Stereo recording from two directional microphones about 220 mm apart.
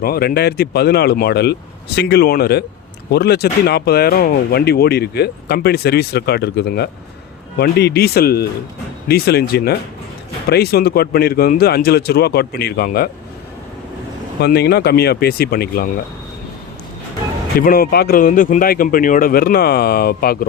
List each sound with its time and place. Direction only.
0.0 s speech: 45° left (ahead or behind)
14.4 s speech: 45° left (ahead or behind)
17.6 s speech: 40° left (ahead or behind)